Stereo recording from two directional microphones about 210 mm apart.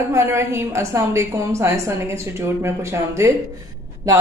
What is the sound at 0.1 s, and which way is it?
A woman's voice, 15° right (ahead or behind).